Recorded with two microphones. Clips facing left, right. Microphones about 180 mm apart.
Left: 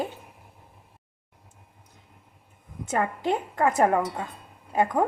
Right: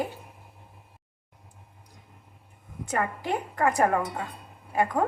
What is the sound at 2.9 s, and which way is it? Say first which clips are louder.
A woman's voice: left 3 dB; 20° left (ahead or behind).